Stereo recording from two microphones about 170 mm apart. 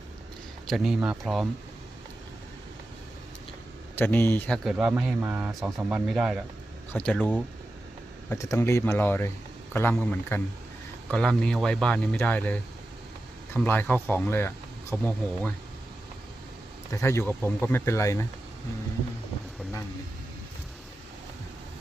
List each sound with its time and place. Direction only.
0.7 s a man's voice: centre (ahead or behind)
3.9 s a man's voice: 10° left (ahead or behind)
8.3 s a man's voice: 15° left (ahead or behind)
13.7 s speech: 10° left (ahead or behind)
16.9 s speech: 15° left (ahead or behind)